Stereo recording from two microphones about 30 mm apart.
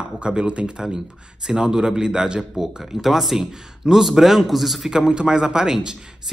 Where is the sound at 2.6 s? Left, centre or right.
Centre.